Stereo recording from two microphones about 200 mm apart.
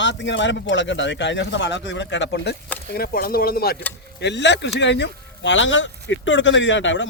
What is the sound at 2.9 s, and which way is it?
Speech, 50° left (ahead or behind).